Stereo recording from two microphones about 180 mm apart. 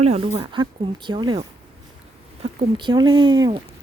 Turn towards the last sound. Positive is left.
turn(degrees=-25)  # may be behind; listen again after turning